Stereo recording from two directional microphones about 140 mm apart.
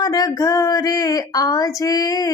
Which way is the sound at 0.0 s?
25° left (ahead or behind).